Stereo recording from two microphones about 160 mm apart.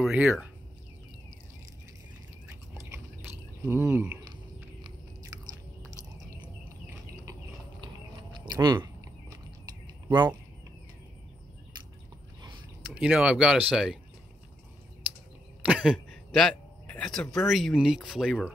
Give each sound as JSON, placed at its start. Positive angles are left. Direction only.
{"t": 0.0, "sound": "speech", "side_deg": -5}
{"t": 3.6, "sound": "speech", "side_deg": -15}
{"t": 7.8, "sound": "a sound", "side_deg": -25}
{"t": 12.8, "sound": "speech", "side_deg": -5}
{"t": 15.6, "sound": "a man's voice", "side_deg": -5}